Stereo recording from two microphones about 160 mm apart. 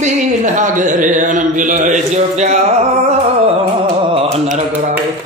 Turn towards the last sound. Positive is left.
turn(degrees=-45)  # may be behind; listen again after turning